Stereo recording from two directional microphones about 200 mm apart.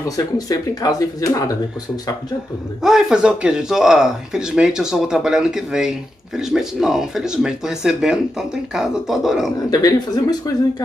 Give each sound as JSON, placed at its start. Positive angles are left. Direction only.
{"t": 0.1, "sound": "speech", "side_deg": 20}
{"t": 2.8, "sound": "speech", "side_deg": 0}
{"t": 9.7, "sound": "speech", "side_deg": 20}